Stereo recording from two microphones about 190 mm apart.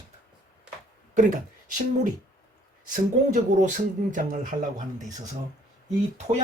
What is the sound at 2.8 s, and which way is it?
Speech, 45° right (ahead or behind).